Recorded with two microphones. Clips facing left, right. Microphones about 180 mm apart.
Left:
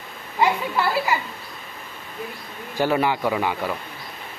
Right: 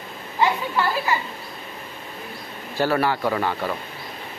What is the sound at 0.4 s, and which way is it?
Speech, 15° left (ahead or behind).